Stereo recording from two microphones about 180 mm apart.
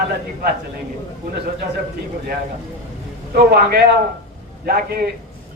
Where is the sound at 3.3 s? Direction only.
60° right (ahead or behind).